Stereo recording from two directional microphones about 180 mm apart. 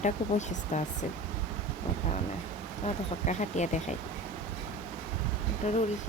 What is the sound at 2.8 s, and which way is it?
Speech, 40° left (ahead or behind).